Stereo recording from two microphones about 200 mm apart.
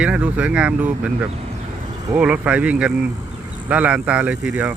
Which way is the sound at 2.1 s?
5° right (ahead or behind).